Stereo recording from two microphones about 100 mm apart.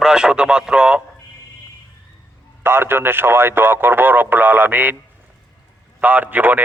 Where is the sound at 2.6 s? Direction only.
25° right (ahead or behind).